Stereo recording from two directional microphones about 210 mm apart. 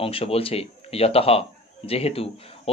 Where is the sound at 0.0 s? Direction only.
25° left (ahead or behind).